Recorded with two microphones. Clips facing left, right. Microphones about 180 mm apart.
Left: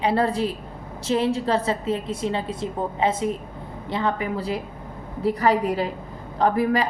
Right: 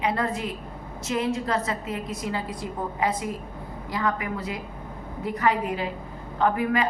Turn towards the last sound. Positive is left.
turn(degrees=35)  # may be behind; listen again after turning